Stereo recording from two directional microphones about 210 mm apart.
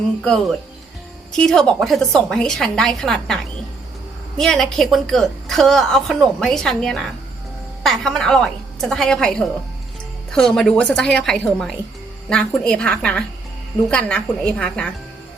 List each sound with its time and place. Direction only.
0.2 s a woman's voice: centre (ahead or behind)